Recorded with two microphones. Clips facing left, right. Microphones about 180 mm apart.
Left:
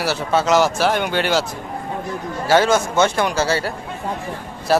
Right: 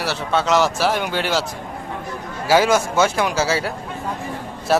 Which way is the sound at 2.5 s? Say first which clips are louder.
Even; 10° right (ahead or behind).